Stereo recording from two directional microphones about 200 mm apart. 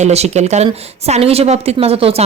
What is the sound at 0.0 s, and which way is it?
A woman's voice, 35° right (ahead or behind).